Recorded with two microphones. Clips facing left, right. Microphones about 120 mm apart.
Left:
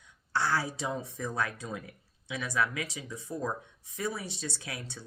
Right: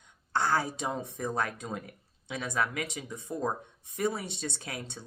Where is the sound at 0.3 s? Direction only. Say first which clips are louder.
Right 2 dB; 50° right (ahead or behind).